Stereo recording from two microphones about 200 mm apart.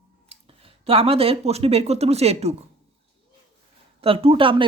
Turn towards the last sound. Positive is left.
turn(degrees=-25)  # may be behind; listen again after turning